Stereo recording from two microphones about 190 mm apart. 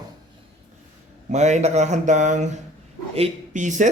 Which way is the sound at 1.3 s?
35° right (ahead or behind).